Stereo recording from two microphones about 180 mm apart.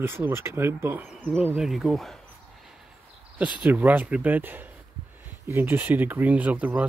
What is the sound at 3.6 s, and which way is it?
Speech, 10° right (ahead or behind).